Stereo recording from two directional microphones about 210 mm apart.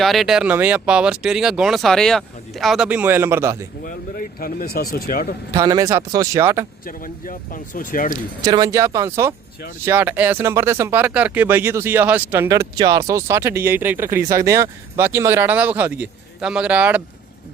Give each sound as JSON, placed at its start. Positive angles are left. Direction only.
{"t": 0.0, "sound": "speech", "side_deg": 0}
{"t": 3.8, "sound": "speech", "side_deg": 45}
{"t": 5.5, "sound": "speech", "side_deg": -15}
{"t": 6.8, "sound": "speech", "side_deg": 40}
{"t": 8.4, "sound": "speech", "side_deg": -15}